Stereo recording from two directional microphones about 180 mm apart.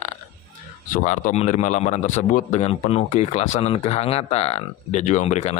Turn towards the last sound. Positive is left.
turn(degrees=35)  # may be behind; listen again after turning